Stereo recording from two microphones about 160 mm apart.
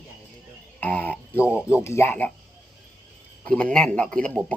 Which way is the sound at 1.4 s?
10° right (ahead or behind).